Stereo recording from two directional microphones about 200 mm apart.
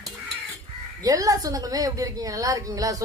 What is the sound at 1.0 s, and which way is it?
A woman's voice, 15° right (ahead or behind).